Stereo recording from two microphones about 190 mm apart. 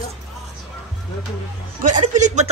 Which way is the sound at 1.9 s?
40° right (ahead or behind).